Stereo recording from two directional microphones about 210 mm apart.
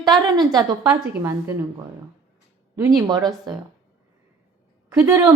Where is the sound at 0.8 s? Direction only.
10° right (ahead or behind).